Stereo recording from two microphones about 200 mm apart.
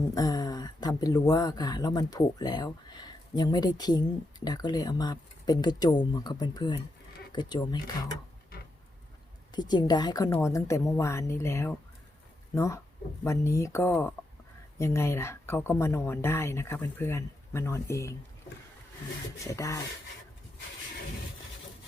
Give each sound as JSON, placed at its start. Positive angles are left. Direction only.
{"t": 0.1, "sound": "speech", "side_deg": 20}
{"t": 9.5, "sound": "speech", "side_deg": 20}
{"t": 19.5, "sound": "speech", "side_deg": 15}